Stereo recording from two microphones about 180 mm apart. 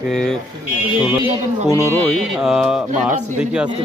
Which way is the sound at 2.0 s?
Centre (ahead or behind).